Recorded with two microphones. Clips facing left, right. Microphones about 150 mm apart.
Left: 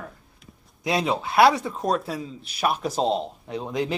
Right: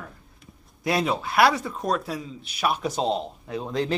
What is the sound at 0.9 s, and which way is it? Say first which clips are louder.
Speech: even; 20° left (ahead or behind).